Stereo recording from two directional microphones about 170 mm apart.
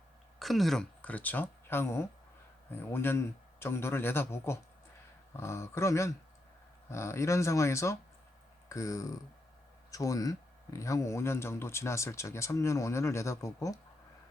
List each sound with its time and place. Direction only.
0.3 s speech: centre (ahead or behind); by 13.7 s 20° left (ahead or behind)